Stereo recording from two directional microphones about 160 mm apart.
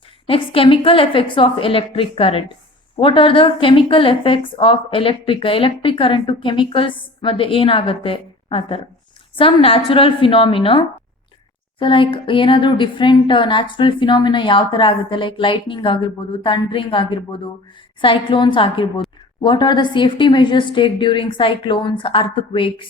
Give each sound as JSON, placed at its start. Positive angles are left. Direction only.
{"t": 0.3, "sound": "a woman's voice", "side_deg": 35}